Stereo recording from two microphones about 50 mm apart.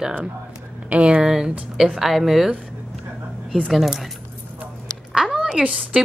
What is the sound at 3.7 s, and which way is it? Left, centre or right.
Speech, centre.